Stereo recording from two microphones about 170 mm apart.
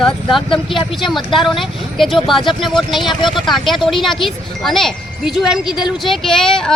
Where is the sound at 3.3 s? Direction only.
Centre (ahead or behind).